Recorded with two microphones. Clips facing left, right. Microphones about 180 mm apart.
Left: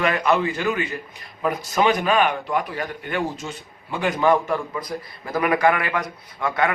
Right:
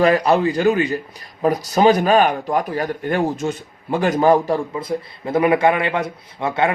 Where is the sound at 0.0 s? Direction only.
35° right (ahead or behind).